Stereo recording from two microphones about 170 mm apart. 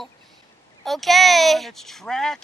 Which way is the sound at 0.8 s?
Centre (ahead or behind).